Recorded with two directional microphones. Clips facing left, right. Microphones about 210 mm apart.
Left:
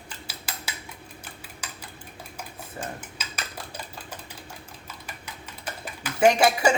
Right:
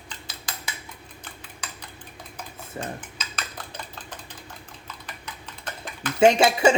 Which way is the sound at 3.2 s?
10° left (ahead or behind).